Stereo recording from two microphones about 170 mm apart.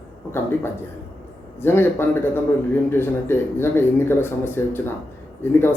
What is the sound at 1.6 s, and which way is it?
Speech, 15° left (ahead or behind).